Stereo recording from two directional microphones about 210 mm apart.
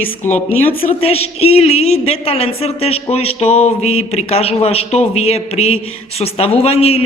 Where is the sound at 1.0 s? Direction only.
30° left (ahead or behind).